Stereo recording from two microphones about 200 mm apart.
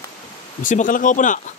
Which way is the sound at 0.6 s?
40° left (ahead or behind).